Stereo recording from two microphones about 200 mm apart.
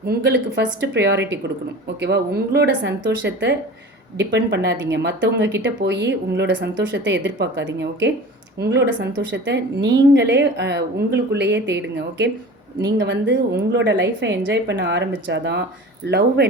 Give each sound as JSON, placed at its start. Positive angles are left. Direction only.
{"t": 0.0, "sound": "speech", "side_deg": -55}